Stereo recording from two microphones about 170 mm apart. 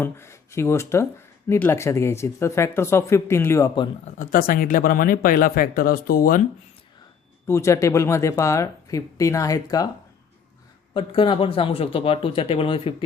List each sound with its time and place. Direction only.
0.0 s speech: 15° left (ahead or behind)
4.0 s speech: 50° left (ahead or behind)
7.4 s speech: 15° left (ahead or behind)
10.9 s speech: 30° left (ahead or behind)